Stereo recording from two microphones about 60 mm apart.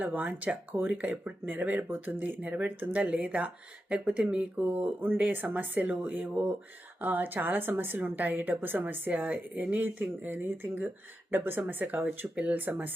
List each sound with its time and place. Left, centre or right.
0.0 s a woman's voice: right